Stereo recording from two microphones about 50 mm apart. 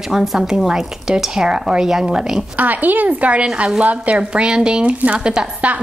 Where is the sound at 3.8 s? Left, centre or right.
Right.